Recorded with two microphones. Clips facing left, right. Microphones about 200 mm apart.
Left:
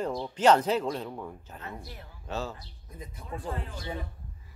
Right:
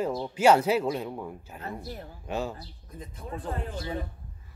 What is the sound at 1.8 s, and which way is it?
Speech, 40° right (ahead or behind).